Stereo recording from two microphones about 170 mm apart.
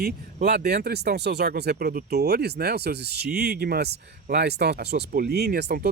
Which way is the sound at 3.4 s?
65° right (ahead or behind).